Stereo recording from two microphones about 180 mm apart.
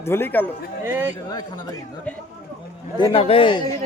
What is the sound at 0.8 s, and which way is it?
Speech, 15° right (ahead or behind).